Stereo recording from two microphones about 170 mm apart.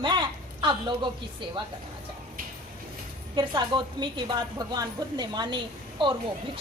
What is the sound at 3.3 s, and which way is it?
A woman's voice, 25° right (ahead or behind).